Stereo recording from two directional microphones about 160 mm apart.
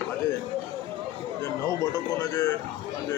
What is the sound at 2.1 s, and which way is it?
Speech, 20° left (ahead or behind).